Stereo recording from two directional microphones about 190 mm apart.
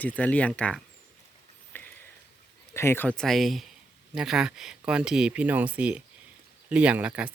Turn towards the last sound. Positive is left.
turn(degrees=-5)  # may be behind; listen again after turning